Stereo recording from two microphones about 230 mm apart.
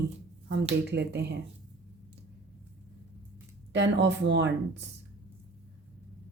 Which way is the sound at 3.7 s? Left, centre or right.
Right.